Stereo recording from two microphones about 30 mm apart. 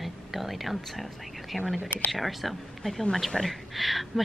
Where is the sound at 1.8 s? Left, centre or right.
Left.